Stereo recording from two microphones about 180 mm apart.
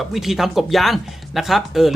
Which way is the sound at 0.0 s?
Centre (ahead or behind).